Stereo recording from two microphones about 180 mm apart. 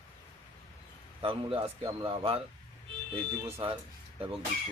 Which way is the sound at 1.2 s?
30° right (ahead or behind).